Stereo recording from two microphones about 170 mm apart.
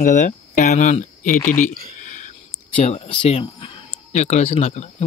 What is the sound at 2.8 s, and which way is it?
Speech, 35° left (ahead or behind).